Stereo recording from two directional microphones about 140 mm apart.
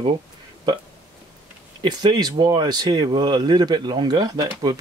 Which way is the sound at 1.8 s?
30° right (ahead or behind).